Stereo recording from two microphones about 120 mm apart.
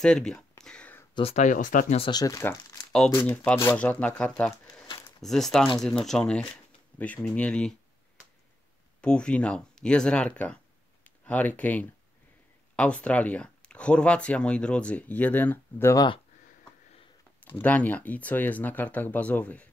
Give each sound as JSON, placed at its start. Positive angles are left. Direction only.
{"t": 0.0, "sound": "speech", "side_deg": 5}
{"t": 0.7, "sound": "a sound", "side_deg": 10}
{"t": 1.3, "sound": "speech", "side_deg": 90}
{"t": 2.0, "sound": "speech", "side_deg": 35}
{"t": 3.2, "sound": "speech", "side_deg": 15}
{"t": 9.0, "sound": "speech", "side_deg": 10}
{"t": 17.5, "sound": "speech", "side_deg": 15}